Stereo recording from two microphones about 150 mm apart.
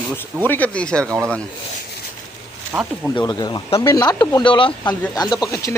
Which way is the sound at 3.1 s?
30° left (ahead or behind).